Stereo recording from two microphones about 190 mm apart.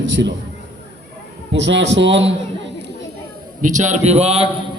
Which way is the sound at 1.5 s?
70° right (ahead or behind).